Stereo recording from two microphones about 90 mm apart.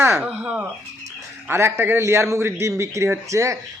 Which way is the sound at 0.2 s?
10° right (ahead or behind).